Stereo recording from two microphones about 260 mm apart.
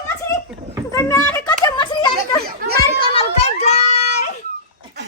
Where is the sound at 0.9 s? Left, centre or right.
Centre.